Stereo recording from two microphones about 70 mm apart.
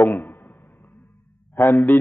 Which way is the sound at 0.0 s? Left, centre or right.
Left.